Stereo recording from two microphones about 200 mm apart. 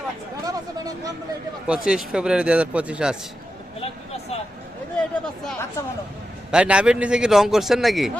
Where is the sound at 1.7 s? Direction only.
5° right (ahead or behind).